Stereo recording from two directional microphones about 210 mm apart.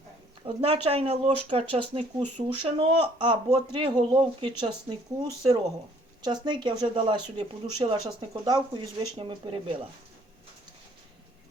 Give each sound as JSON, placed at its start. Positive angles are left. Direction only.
{"t": 0.4, "sound": "speech", "side_deg": -25}
{"t": 6.2, "sound": "speech", "side_deg": -20}